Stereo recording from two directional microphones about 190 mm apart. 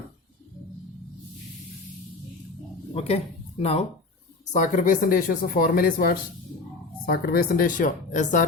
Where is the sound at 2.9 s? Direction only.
35° left (ahead or behind).